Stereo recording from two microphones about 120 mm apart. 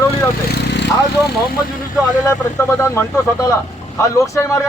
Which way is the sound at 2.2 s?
25° left (ahead or behind).